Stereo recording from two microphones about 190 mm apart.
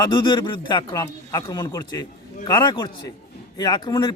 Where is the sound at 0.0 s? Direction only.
20° left (ahead or behind).